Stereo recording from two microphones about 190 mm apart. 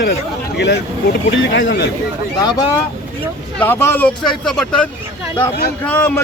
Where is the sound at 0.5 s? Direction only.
65° left (ahead or behind).